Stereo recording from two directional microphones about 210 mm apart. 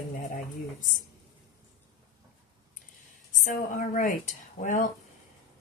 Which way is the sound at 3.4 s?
40° left (ahead or behind).